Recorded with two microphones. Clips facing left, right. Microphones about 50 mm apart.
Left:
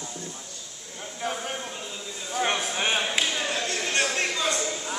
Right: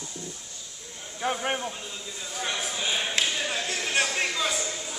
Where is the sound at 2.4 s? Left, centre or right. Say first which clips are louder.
Left 3 dB; left.